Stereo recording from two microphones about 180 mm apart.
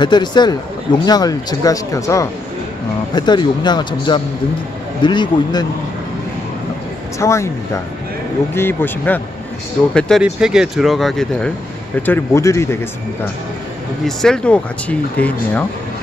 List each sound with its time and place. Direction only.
0.0 s speech: 25° left (ahead or behind)
7.2 s speech: 15° left (ahead or behind)
12.1 s speech: 15° left (ahead or behind)
14.0 s speech: 5° left (ahead or behind)